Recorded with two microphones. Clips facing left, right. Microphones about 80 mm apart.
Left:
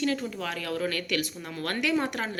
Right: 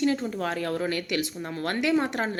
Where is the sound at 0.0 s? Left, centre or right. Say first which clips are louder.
Right 3 dB; right.